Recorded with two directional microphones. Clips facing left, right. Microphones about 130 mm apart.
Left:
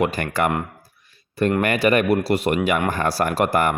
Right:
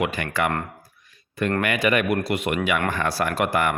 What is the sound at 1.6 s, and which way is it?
Speech, 35° left (ahead or behind).